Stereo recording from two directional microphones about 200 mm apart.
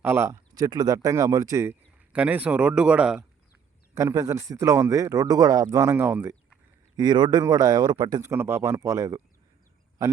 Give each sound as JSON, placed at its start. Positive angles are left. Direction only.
{"t": 0.0, "sound": "speech", "side_deg": -10}
{"t": 3.9, "sound": "speech", "side_deg": -15}
{"t": 6.9, "sound": "a man's voice", "side_deg": -20}